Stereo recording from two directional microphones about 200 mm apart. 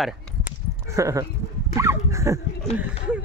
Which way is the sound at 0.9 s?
15° right (ahead or behind).